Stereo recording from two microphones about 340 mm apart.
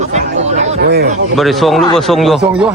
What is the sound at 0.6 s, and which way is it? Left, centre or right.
Chatter, right.